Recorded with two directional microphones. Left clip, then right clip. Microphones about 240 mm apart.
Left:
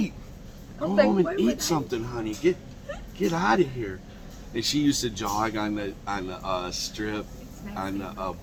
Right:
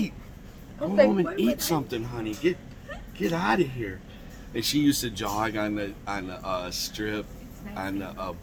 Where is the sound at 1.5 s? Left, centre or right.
Right.